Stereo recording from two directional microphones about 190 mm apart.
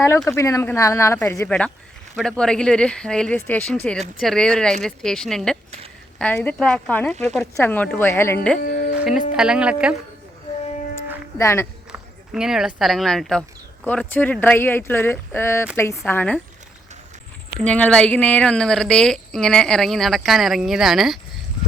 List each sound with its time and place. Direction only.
0.3 s a woman's voice: 15° left (ahead or behind)
9.0 s music: 5° right (ahead or behind)
9.3 s a woman's voice: 5° right (ahead or behind)
11.3 s speech: 15° left (ahead or behind)
11.9 s speech: 5° right (ahead or behind)
17.6 s a woman's voice: 5° left (ahead or behind)